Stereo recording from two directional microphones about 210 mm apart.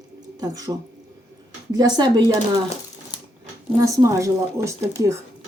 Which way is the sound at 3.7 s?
15° right (ahead or behind).